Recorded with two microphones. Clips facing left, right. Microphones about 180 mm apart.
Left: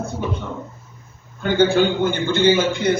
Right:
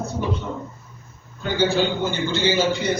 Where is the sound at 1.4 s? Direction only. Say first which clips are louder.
Left 4 dB; 55° left (ahead or behind).